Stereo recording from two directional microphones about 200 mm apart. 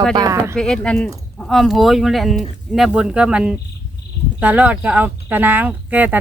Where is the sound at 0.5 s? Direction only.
5° left (ahead or behind).